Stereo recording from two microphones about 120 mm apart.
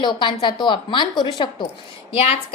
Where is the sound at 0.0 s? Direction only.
40° left (ahead or behind).